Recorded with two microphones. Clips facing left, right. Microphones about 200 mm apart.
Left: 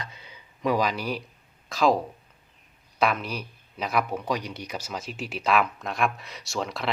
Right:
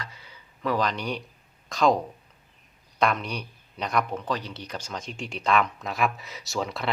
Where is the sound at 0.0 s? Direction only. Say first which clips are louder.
Left 1 dB; 20° left (ahead or behind).